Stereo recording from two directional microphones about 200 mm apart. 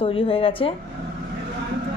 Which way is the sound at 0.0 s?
30° left (ahead or behind).